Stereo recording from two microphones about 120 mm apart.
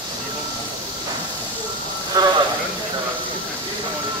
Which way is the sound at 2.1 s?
30° right (ahead or behind).